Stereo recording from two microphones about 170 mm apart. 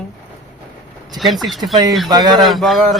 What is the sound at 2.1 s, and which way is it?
Speech, 25° right (ahead or behind).